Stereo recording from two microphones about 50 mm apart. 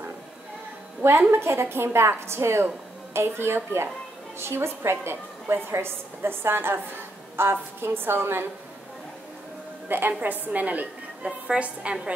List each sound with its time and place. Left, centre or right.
1.3 s a woman's voice: right
9.8 s a woman's voice: right